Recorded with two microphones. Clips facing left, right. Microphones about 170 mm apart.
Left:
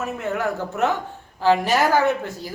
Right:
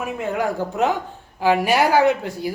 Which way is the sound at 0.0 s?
15° right (ahead or behind).